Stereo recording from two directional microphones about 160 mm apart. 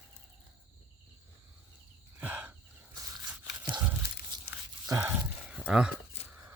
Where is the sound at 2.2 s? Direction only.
10° right (ahead or behind).